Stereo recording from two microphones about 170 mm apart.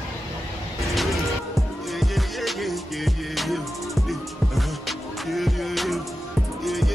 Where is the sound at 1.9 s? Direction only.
Centre (ahead or behind).